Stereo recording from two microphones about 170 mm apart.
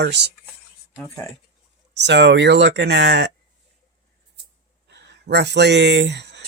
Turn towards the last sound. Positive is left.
turn(degrees=-90)